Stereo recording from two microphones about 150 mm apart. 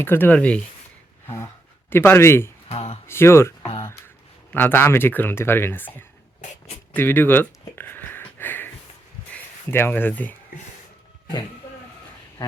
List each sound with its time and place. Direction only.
0.0 s speech: 15° left (ahead or behind)
1.9 s speech: 15° left (ahead or behind)
2.6 s speech: 40° left (ahead or behind)
3.1 s speech: 15° left (ahead or behind)
3.8 s a sound: 15° left (ahead or behind)
4.5 s speech: 15° left (ahead or behind)
6.9 s a sound: 15° left (ahead or behind)
9.3 s speech: 15° left (ahead or behind)